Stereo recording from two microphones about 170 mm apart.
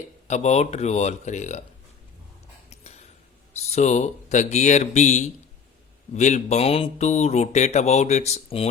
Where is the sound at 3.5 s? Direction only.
40° left (ahead or behind).